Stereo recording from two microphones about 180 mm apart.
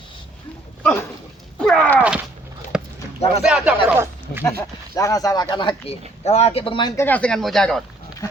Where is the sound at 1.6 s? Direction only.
5° left (ahead or behind).